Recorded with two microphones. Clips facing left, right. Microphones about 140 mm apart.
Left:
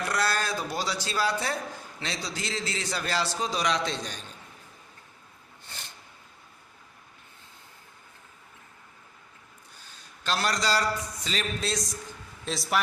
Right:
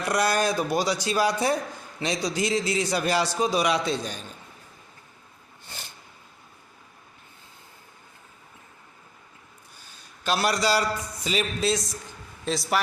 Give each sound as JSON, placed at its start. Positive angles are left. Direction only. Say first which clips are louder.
{"t": 0.1, "sound": "a man's voice", "louder": "right 8 dB", "side_deg": -15}
{"t": 10.2, "sound": "a man's voice", "louder": "right 4 dB", "side_deg": -10}